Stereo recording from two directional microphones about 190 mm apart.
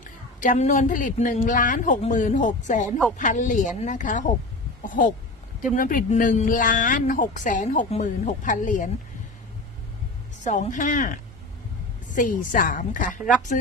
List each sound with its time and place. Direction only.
0.0 s speech: 40° left (ahead or behind)
10.4 s speech: 40° left (ahead or behind)